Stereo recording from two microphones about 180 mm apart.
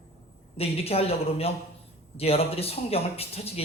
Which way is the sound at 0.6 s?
35° left (ahead or behind).